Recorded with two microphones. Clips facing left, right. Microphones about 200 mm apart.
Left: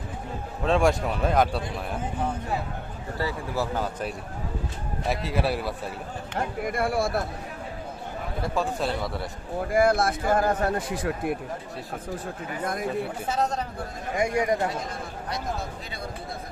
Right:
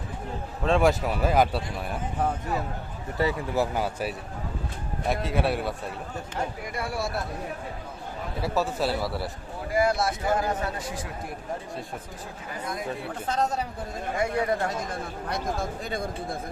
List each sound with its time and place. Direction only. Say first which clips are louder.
0.6 s speech: even; centre (ahead or behind)
3.2 s speech: right 4 dB; 20° right (ahead or behind)
5.0 s speech: right 1 dB; centre (ahead or behind)
6.3 s speech: left 5 dB; 55° left (ahead or behind)
8.4 s speech: right 1 dB; 5° right (ahead or behind)
9.7 s speech: left 2 dB; 55° left (ahead or behind)
13.0 s speech: left 1 dB; 5° left (ahead or behind)
14.2 s speech: left 2 dB; 15° left (ahead or behind)